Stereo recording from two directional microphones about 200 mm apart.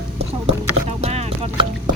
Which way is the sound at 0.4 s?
30° right (ahead or behind).